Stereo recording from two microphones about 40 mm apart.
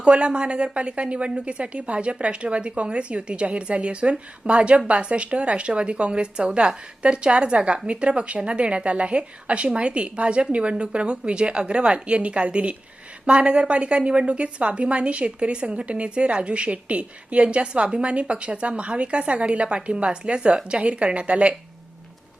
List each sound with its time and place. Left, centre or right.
0.0 s a woman's voice: right